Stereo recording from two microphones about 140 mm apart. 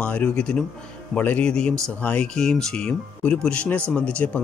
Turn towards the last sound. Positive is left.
turn(degrees=10)  # may be behind; listen again after turning